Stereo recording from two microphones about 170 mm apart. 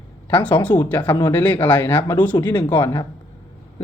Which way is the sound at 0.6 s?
10° left (ahead or behind).